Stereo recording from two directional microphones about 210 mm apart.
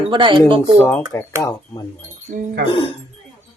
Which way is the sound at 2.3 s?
40° right (ahead or behind).